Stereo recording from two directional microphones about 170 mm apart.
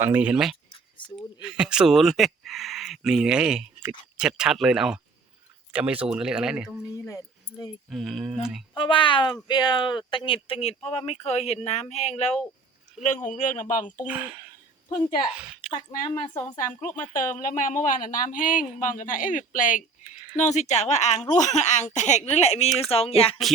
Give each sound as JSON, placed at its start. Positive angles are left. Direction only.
{"t": 0.0, "sound": "speech", "side_deg": -10}
{"t": 1.0, "sound": "a sound", "side_deg": 30}
{"t": 1.4, "sound": "speech", "side_deg": -5}
{"t": 7.9, "sound": "speech", "side_deg": 0}
{"t": 8.7, "sound": "speech", "side_deg": 30}
{"t": 14.1, "sound": "speech", "side_deg": -10}
{"t": 15.4, "sound": "a sound", "side_deg": -5}
{"t": 15.7, "sound": "speech", "side_deg": 30}
{"t": 16.8, "sound": "speech", "side_deg": 50}